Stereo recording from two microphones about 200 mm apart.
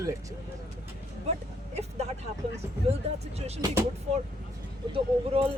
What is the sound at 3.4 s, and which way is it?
Speech, 30° right (ahead or behind).